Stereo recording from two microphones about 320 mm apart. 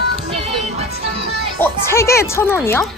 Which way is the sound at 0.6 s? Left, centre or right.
Centre.